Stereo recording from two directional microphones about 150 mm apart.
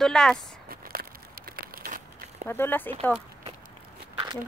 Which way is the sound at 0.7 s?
80° right.